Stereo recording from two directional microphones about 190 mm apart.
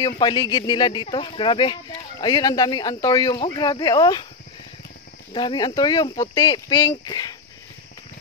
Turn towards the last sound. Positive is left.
turn(degrees=20)  # may be behind; listen again after turning